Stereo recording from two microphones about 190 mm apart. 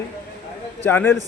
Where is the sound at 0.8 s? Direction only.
10° left (ahead or behind).